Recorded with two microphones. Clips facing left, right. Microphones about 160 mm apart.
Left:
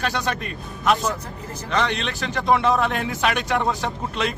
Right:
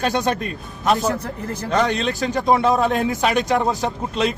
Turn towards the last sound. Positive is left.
turn(degrees=-30)  # may be behind; listen again after turning